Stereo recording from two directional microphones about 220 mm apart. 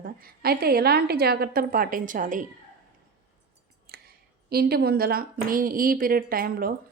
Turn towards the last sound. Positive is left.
turn(degrees=-40)  # may be behind; listen again after turning